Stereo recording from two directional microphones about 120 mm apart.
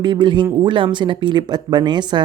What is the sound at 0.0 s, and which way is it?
Speech, 40° right (ahead or behind).